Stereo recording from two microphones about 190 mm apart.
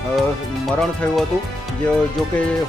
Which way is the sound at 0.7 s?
Centre (ahead or behind).